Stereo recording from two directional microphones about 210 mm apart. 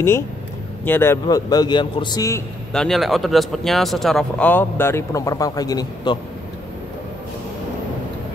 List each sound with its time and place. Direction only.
0.8 s a man's voice: 10° left (ahead or behind)
2.7 s speech: centre (ahead or behind); by 6.1 s 20° left (ahead or behind)